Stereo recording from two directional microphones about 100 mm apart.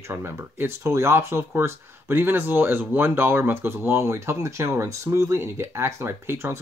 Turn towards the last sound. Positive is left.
turn(degrees=-25)  # may be behind; listen again after turning